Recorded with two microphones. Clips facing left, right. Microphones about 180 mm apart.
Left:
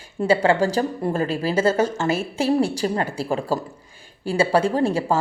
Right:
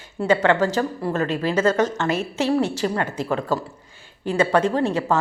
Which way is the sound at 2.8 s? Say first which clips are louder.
Even; 30° left (ahead or behind).